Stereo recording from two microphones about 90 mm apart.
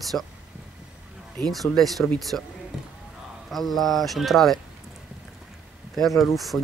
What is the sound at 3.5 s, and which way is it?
Speech, centre (ahead or behind).